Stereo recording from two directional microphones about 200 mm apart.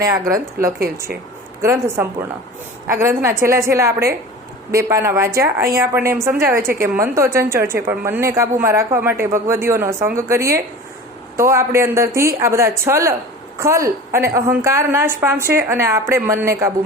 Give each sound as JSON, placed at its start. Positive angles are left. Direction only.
{"t": 0.0, "sound": "a woman's voice", "side_deg": -15}
{"t": 0.8, "sound": "speech", "side_deg": -50}
{"t": 1.6, "sound": "a woman's voice", "side_deg": -15}